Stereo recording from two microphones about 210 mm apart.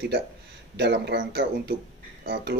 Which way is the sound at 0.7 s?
55° right (ahead or behind).